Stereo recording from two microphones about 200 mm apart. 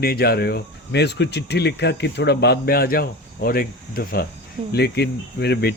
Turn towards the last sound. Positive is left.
turn(degrees=55)  # may be behind; listen again after turning